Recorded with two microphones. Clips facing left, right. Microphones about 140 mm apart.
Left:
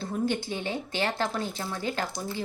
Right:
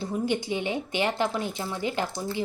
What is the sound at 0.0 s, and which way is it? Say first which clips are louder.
Speech: right 1 dB; 15° right (ahead or behind).